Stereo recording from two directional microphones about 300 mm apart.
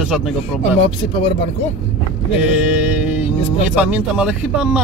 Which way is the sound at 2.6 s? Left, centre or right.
Centre.